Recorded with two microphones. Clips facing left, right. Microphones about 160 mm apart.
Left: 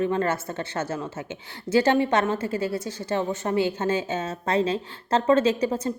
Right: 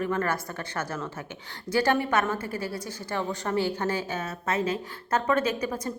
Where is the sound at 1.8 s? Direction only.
25° left (ahead or behind).